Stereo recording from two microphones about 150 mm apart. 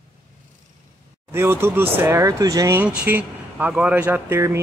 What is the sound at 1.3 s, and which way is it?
Speech, 15° right (ahead or behind).